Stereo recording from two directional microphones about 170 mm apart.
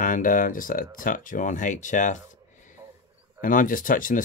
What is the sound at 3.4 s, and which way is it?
Speech, 55° left (ahead or behind).